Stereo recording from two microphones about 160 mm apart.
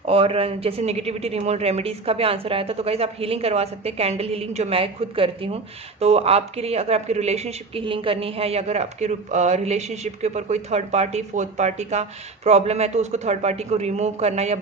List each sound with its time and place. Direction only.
0.1 s a woman's voice: 35° right (ahead or behind)